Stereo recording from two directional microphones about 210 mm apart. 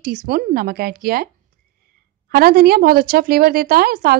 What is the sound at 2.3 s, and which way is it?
Speech, 45° right (ahead or behind).